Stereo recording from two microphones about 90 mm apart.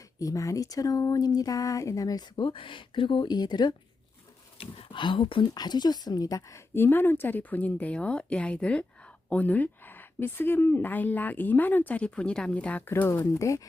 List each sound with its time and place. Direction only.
0.2 s speech: 40° left (ahead or behind)
2.5 s speech: 70° left (ahead or behind); by 3.8 s 50° left (ahead or behind)
4.5 s speech: 90° left; by 5.5 s 75° left (ahead or behind)
5.5 s a woman's voice: 50° left (ahead or behind)
6.7 s speech: 25° left (ahead or behind)
12.9 s speech: 30° left (ahead or behind)